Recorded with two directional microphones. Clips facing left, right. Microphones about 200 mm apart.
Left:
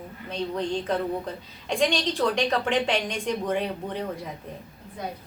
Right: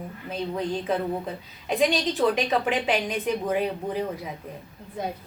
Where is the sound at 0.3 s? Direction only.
5° right (ahead or behind).